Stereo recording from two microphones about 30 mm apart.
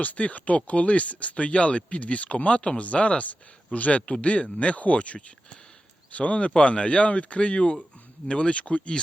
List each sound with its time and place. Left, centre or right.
0.0 s speech: left
3.2 s speech: left
4.0 s speech: left
6.5 s speech: left